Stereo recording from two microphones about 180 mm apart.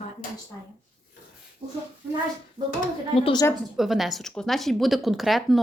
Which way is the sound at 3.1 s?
30° left (ahead or behind).